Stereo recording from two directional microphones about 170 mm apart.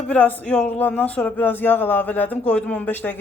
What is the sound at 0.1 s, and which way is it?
Speech, 10° left (ahead or behind).